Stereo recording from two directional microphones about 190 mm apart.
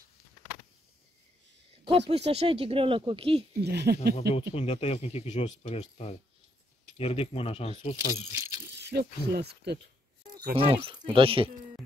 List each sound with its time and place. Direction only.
1.9 s speech: 30° right (ahead or behind)
3.6 s speech: 60° right (ahead or behind)
4.4 s speech: 30° left (ahead or behind)
8.3 s keys jangling: 15° right (ahead or behind)
8.8 s speech: 55° right (ahead or behind)
10.6 s speech: 25° right (ahead or behind)